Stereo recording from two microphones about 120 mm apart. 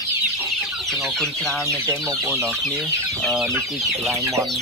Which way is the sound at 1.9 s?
25° right (ahead or behind).